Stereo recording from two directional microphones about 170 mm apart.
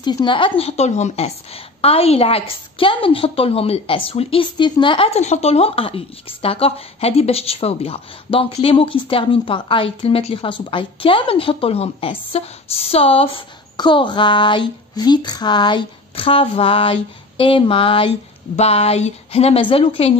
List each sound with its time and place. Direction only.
0.0 s a woman's voice: 30° left (ahead or behind)